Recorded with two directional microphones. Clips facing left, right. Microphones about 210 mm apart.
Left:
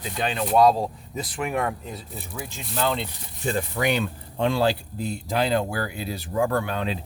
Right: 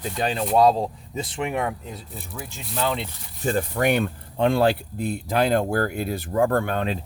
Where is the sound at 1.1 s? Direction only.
25° right (ahead or behind).